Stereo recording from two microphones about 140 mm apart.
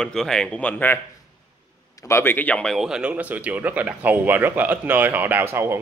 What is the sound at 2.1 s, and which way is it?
Speech, 15° left (ahead or behind).